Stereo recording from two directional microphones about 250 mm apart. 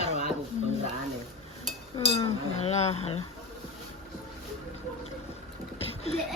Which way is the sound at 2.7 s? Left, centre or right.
Left.